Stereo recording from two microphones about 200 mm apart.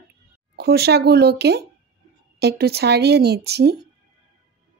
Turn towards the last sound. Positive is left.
turn(degrees=-55)  # may be behind; listen again after turning